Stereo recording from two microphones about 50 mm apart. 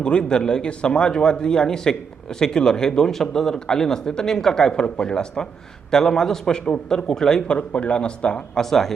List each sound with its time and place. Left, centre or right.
0.0 s a man's voice: centre
8.7 s a man's voice: centre